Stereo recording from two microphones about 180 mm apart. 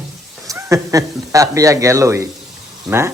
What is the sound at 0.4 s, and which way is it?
Speech, 15° right (ahead or behind).